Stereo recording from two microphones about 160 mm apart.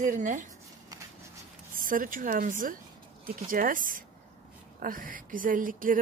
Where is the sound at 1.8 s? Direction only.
60° right (ahead or behind).